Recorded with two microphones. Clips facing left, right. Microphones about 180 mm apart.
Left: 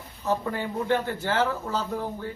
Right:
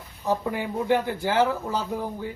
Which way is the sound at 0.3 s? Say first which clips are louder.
Right 1 dB; 15° right (ahead or behind).